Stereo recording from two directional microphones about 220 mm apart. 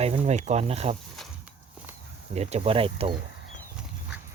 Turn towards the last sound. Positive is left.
turn(degrees=-25)  # may be behind; listen again after turning